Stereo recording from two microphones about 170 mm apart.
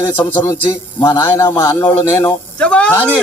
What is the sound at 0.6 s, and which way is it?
A man's voice, 20° left (ahead or behind).